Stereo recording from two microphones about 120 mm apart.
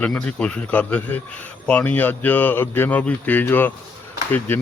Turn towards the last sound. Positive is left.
turn(degrees=15)  # may be behind; listen again after turning